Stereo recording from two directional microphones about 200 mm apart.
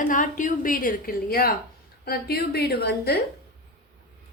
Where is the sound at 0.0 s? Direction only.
40° left (ahead or behind).